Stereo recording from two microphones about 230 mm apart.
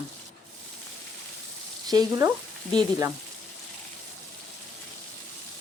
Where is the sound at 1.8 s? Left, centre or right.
Centre.